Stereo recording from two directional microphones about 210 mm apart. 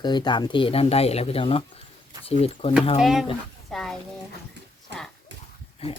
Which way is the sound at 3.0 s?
Centre (ahead or behind).